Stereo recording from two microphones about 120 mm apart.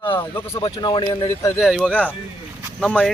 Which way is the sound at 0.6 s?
40° left (ahead or behind).